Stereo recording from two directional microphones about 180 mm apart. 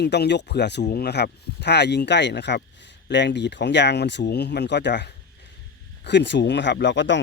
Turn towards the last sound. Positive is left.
turn(degrees=85)